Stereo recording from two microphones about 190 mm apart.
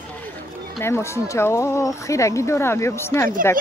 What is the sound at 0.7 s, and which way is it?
Speech, 15° left (ahead or behind).